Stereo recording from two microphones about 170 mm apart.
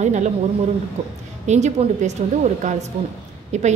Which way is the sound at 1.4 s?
40° right (ahead or behind).